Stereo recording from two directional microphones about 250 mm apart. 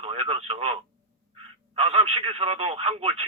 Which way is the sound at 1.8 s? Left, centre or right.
Right.